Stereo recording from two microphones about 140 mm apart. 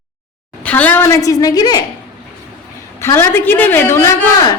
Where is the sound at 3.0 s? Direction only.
20° left (ahead or behind).